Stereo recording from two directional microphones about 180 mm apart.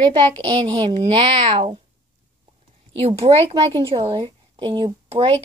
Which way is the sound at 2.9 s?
35° right (ahead or behind).